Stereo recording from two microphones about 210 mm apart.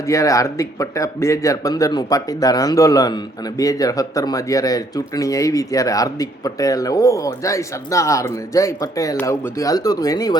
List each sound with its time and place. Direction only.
0.0 s speech: 15° left (ahead or behind)